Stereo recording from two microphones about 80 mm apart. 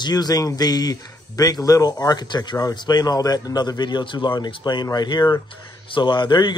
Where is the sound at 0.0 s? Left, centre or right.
Left.